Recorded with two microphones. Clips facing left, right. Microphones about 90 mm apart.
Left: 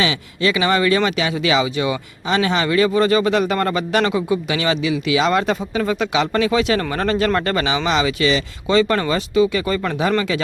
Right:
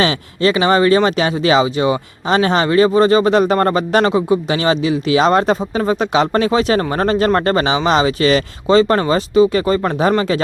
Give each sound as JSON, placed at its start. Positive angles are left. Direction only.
{"t": 0.0, "sound": "speech", "side_deg": -35}